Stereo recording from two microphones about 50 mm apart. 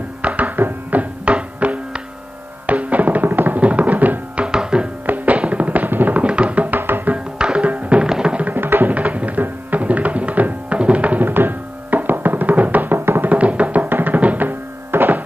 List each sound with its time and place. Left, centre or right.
0.2 s music: right
0.6 s music: right
1.2 s music: right
4.5 s music: centre
5.0 s music: right
6.2 s music: right
6.8 s music: right
7.3 s music: centre
8.5 s music: right
8.9 s music: right
11.2 s music: right
13.3 s music: right